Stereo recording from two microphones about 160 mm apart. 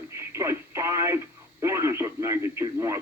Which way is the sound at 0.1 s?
20° right (ahead or behind).